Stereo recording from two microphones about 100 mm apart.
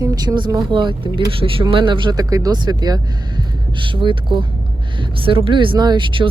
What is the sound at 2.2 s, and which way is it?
Speech, 35° right (ahead or behind).